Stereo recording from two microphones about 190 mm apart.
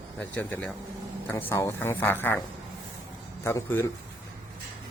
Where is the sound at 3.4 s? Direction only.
10° left (ahead or behind).